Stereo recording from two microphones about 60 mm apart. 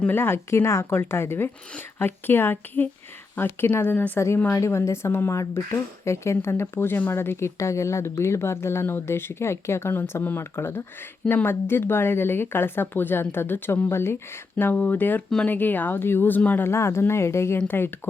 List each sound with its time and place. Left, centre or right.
0.1 s speech: left
4.5 s speech: left
14.6 s speech: left
16.6 s speech: left
17.7 s speech: left